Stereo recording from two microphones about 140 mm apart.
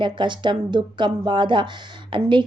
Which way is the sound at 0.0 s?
35° right (ahead or behind).